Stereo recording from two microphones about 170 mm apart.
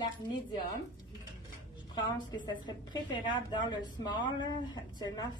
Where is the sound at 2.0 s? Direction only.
25° left (ahead or behind).